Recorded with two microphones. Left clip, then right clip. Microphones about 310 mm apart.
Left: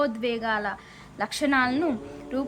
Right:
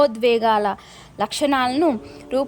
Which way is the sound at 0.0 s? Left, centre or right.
Right.